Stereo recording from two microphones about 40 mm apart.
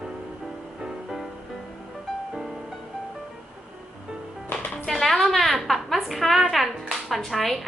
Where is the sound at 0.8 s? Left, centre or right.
Centre.